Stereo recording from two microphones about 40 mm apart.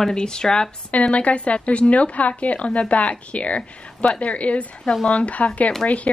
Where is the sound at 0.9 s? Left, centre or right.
Left.